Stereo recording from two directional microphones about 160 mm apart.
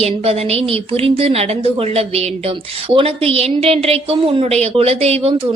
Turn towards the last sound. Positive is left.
turn(degrees=-35)  # may be behind; listen again after turning